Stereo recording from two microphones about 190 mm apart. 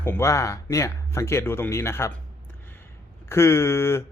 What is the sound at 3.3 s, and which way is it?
Speech, 15° left (ahead or behind).